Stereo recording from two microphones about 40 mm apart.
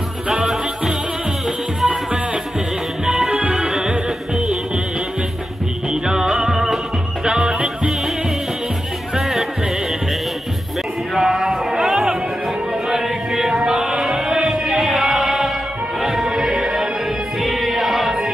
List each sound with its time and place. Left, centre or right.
3.1 s music: centre
6.0 s music: centre
9.1 s music: centre
11.1 s music: centre